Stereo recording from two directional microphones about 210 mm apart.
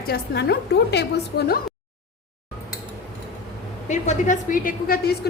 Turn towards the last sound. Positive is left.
turn(degrees=45)  # may be behind; listen again after turning